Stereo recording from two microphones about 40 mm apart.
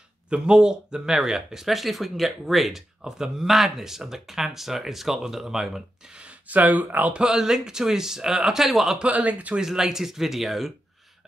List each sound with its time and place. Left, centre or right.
0.3 s speech: right; by 2.8 s centre
3.0 s speech: centre
6.4 s speech: right
7.2 s a man's voice: centre
9.1 s speech: right
9.6 s speech: centre